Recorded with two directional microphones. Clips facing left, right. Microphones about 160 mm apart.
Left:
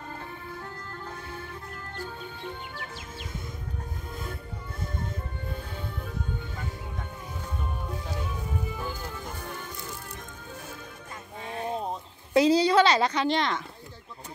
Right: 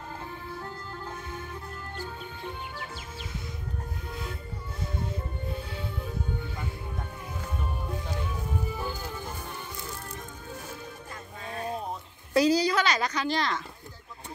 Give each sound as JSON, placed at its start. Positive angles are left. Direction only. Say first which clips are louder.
{"t": 4.1, "sound": "music", "louder": "even", "side_deg": 50}
{"t": 8.7, "sound": "music", "louder": "right 1 dB", "side_deg": -5}
{"t": 11.4, "sound": "a sound", "louder": "left 2 dB", "side_deg": 20}
{"t": 12.4, "sound": "a woman's voice", "louder": "left 3 dB", "side_deg": 25}